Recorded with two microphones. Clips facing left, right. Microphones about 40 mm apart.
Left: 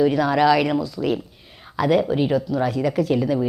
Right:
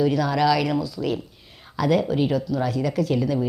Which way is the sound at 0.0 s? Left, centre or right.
Centre.